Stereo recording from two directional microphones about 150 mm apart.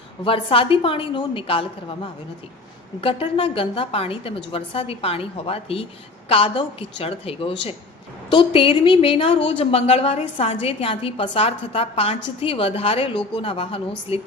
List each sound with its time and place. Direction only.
0.3 s a woman's voice: 35° left (ahead or behind)
3.0 s a woman's voice: 35° left (ahead or behind)